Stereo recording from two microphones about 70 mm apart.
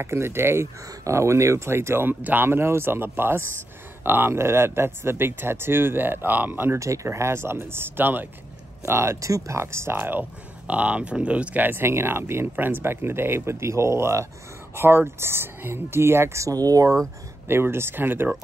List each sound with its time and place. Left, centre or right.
0.0 s speech: right
6.8 s speech: right
16.5 s speech: right
17.5 s speech: right